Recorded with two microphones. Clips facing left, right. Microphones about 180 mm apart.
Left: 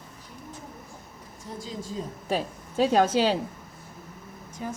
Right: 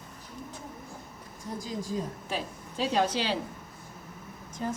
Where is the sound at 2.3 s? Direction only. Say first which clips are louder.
Left 9 dB; 45° left (ahead or behind).